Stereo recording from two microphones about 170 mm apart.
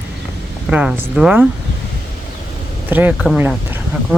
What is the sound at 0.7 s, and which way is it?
Speech, 5° right (ahead or behind).